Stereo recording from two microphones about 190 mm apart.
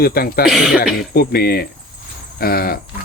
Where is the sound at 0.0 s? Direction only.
55° left (ahead or behind).